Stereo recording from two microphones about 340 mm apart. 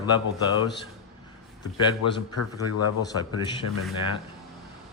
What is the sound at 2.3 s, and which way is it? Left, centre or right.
Speech, left.